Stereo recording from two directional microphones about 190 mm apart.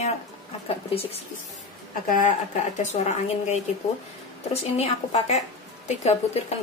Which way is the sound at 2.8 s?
35° left (ahead or behind).